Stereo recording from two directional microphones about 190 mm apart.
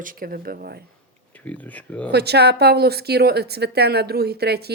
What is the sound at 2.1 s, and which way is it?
A woman's voice, 60° right (ahead or behind).